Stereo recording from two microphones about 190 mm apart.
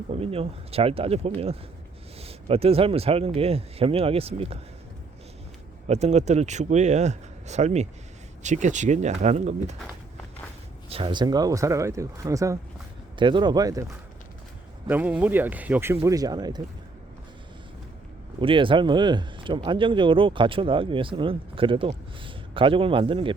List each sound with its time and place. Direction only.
0.1 s speech: 30° right (ahead or behind)
5.9 s speech: 35° right (ahead or behind)
10.8 s speech: 30° right (ahead or behind)
18.3 s speech: 25° right (ahead or behind)